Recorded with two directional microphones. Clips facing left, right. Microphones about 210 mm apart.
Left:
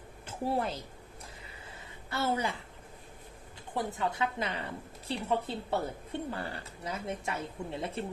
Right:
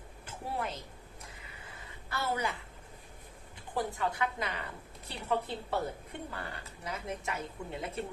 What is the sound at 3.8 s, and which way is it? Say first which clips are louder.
Speech: left 1 dB; 25° left (ahead or behind).